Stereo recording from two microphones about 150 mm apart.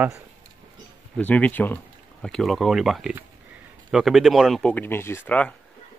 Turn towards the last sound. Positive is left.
turn(degrees=10)  # may be behind; listen again after turning